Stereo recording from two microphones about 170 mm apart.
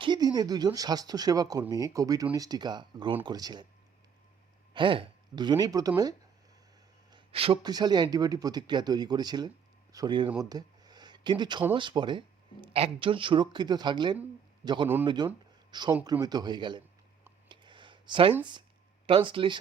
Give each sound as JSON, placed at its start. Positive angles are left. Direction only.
{"t": 0.0, "sound": "speech", "side_deg": -25}
{"t": 4.7, "sound": "speech", "side_deg": -30}
{"t": 7.1, "sound": "a man's voice", "side_deg": -35}
{"t": 17.5, "sound": "a sound", "side_deg": -30}
{"t": 19.0, "sound": "speech", "side_deg": -30}